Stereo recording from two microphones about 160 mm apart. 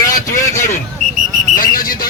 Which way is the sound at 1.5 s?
60° left (ahead or behind).